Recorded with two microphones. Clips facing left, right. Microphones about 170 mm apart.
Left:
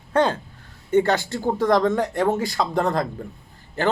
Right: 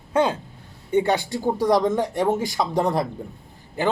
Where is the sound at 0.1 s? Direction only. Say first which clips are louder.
Left 1 dB; 10° right (ahead or behind).